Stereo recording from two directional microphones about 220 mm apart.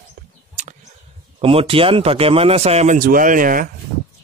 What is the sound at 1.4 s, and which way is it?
Speech, 25° right (ahead or behind).